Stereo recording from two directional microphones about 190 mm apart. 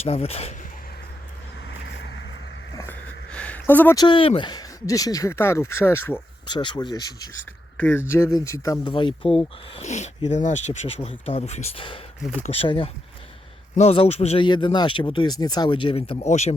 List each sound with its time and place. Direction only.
0.0 s speech: 30° left (ahead or behind)
1.6 s vehicle: 65° left (ahead or behind)
2.7 s a sound: 10° left (ahead or behind)
3.9 s speech: 25° left (ahead or behind)
6.5 s speech: 25° left (ahead or behind)
7.8 s speech: 10° left (ahead or behind); by 16.6 s 35° left (ahead or behind)